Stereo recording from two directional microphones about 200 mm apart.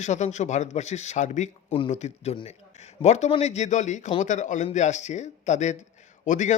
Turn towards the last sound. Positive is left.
turn(degrees=40)  # may be behind; listen again after turning